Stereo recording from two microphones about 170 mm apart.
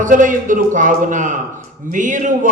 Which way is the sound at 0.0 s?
50° right (ahead or behind).